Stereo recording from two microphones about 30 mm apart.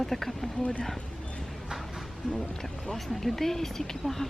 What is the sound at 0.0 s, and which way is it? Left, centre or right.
Speech, centre.